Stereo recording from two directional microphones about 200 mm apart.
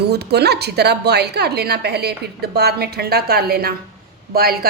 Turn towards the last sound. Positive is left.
turn(degrees=-50)  # may be behind; listen again after turning